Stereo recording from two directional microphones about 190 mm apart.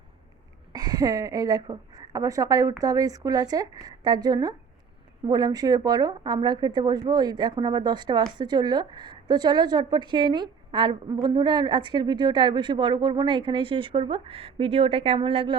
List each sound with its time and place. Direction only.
0.7 s speech: 20° right (ahead or behind)